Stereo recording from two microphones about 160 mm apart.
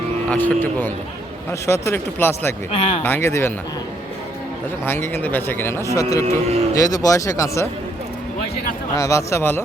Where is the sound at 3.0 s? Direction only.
15° left (ahead or behind).